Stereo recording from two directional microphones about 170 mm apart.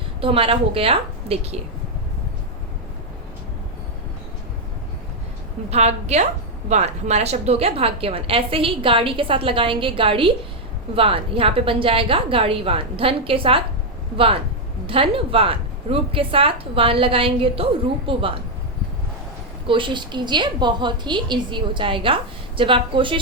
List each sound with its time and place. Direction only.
0.2 s a woman's voice: 35° right (ahead or behind)
5.7 s a woman's voice: 40° right (ahead or behind)
14.8 s a woman's voice: 30° right (ahead or behind)
19.6 s a woman's voice: 30° right (ahead or behind)